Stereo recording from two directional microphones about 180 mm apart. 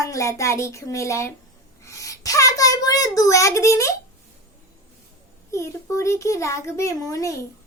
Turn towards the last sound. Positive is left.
turn(degrees=20)  # may be behind; listen again after turning